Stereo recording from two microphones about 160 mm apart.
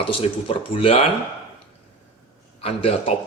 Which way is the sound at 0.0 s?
35° left (ahead or behind).